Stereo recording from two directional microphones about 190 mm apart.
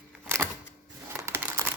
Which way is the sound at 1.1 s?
10° right (ahead or behind).